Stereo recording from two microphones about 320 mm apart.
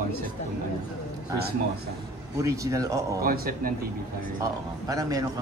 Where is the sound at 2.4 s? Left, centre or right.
Centre.